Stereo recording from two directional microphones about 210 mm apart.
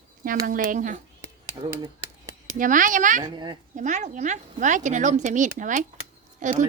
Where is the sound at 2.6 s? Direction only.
40° right (ahead or behind).